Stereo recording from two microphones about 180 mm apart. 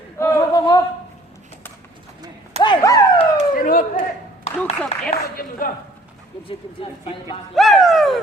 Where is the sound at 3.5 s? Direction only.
50° left (ahead or behind).